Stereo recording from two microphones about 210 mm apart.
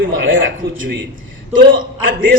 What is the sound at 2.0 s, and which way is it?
Speech, 40° right (ahead or behind).